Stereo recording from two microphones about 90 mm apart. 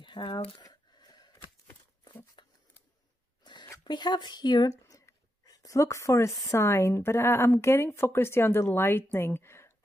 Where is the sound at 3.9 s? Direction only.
55° left (ahead or behind).